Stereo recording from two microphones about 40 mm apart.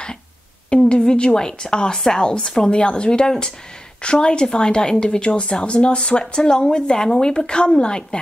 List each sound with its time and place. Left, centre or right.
0.7 s a woman's voice: left